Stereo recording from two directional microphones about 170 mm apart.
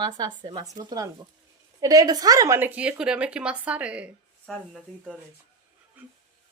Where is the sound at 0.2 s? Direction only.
25° right (ahead or behind); by 5.1 s centre (ahead or behind).